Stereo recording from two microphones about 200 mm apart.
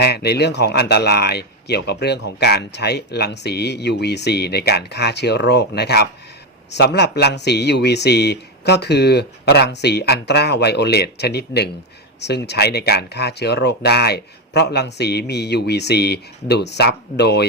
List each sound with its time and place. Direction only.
0.0 s a man's voice: 55° left (ahead or behind)